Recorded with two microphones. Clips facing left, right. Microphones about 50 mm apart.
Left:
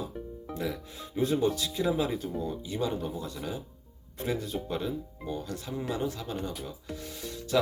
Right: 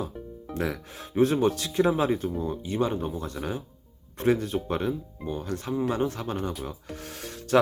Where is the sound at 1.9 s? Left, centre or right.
Right.